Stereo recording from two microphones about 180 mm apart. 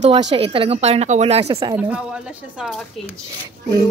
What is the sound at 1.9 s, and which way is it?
Speech, 5° right (ahead or behind).